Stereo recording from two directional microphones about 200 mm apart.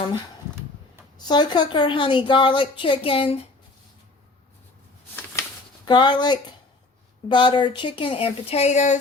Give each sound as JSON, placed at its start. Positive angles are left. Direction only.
{"t": 1.2, "sound": "a woman's voice", "side_deg": 20}
{"t": 5.8, "sound": "a woman's voice", "side_deg": 25}